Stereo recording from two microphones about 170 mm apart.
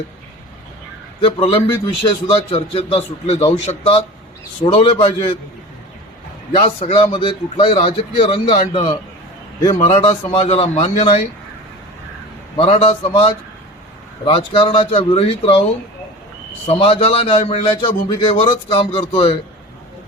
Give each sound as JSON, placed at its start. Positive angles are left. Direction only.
{"t": 1.2, "sound": "a man's voice", "side_deg": 35}
{"t": 6.5, "sound": "a man's voice", "side_deg": 35}
{"t": 9.8, "sound": "a man's voice", "side_deg": 35}
{"t": 12.5, "sound": "a man's voice", "side_deg": 35}
{"t": 16.6, "sound": "a man's voice", "side_deg": 35}